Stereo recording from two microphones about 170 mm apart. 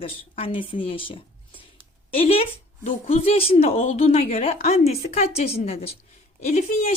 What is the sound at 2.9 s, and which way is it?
A woman's voice, 35° left (ahead or behind).